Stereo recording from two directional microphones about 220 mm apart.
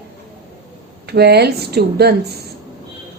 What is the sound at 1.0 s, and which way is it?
A woman's voice, 45° right (ahead or behind).